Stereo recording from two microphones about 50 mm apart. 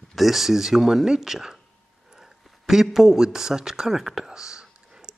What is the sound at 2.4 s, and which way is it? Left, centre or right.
Speech, centre.